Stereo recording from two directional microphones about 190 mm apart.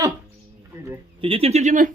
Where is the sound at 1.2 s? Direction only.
30° right (ahead or behind).